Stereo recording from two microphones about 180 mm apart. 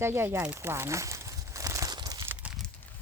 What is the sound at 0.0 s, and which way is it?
Crumpling, 15° right (ahead or behind).